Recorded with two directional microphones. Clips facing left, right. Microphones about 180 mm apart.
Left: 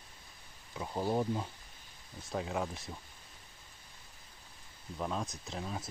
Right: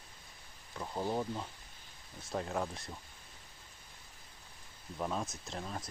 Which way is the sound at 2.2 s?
Centre (ahead or behind).